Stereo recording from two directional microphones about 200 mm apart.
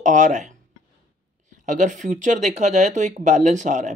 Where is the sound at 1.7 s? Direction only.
40° right (ahead or behind).